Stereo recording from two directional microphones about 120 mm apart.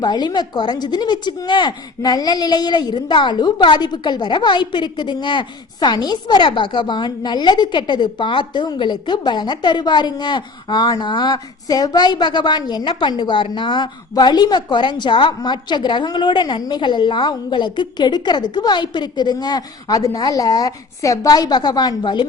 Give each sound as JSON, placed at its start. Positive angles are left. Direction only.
{"t": 0.0, "sound": "a woman's voice", "side_deg": 35}